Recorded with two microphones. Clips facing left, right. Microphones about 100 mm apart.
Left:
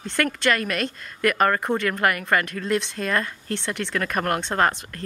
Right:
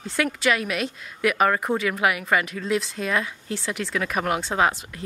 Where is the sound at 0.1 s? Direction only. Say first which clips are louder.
Even; 5° right (ahead or behind).